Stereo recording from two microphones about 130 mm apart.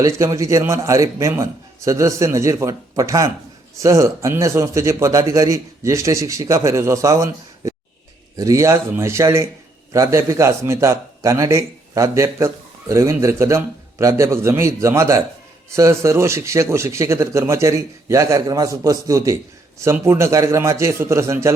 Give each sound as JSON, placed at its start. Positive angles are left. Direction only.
{"t": 0.0, "sound": "a man's voice", "side_deg": -25}